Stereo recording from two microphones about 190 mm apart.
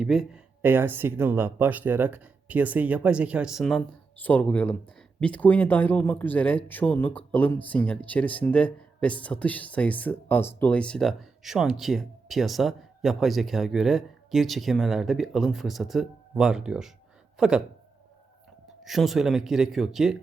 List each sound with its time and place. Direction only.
0.0 s speech: centre (ahead or behind)
18.9 s speech: centre (ahead or behind)